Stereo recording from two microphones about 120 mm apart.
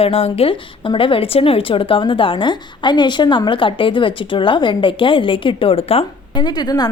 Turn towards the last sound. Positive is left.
turn(degrees=35)  # may be behind; listen again after turning